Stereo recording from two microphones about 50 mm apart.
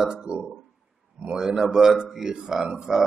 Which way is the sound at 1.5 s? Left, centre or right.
Centre.